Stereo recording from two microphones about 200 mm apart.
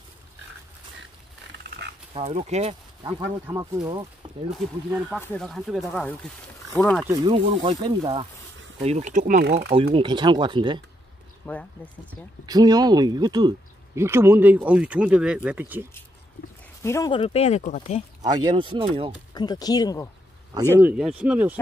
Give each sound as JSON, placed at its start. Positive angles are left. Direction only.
{"t": 2.1, "sound": "speech", "side_deg": -30}
{"t": 3.4, "sound": "speech", "side_deg": -20}
{"t": 4.5, "sound": "speech", "side_deg": 0}
{"t": 7.1, "sound": "speech", "side_deg": -25}
{"t": 8.8, "sound": "speech", "side_deg": -35}
{"t": 9.4, "sound": "speech", "side_deg": -55}
{"t": 9.9, "sound": "speech", "side_deg": -20}
{"t": 11.4, "sound": "speech", "side_deg": 10}
{"t": 12.4, "sound": "speech", "side_deg": -20}
{"t": 16.8, "sound": "speech", "side_deg": 15}
{"t": 17.1, "sound": "speech", "side_deg": 30}
{"t": 18.2, "sound": "speech", "side_deg": -20}
{"t": 19.3, "sound": "speech", "side_deg": 20}
{"t": 20.8, "sound": "speech", "side_deg": -5}